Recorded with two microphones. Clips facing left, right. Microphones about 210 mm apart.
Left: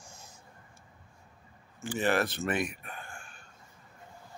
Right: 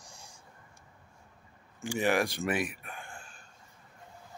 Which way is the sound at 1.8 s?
15° right (ahead or behind).